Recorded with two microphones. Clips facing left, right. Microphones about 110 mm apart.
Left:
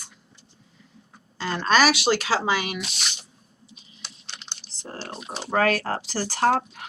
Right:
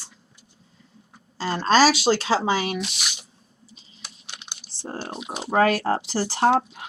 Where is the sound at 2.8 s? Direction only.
Centre (ahead or behind).